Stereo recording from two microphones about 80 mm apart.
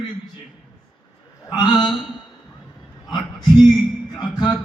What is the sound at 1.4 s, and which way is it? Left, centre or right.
Speech, left.